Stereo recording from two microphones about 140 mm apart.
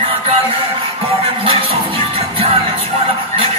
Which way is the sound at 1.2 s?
40° right (ahead or behind).